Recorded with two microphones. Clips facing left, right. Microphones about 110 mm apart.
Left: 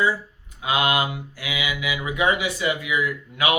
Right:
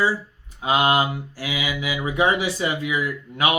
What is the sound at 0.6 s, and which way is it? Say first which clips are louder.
Mantra: right 3 dB; 30° right (ahead or behind).